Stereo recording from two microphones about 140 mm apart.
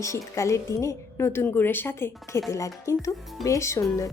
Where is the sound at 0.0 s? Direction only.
20° left (ahead or behind).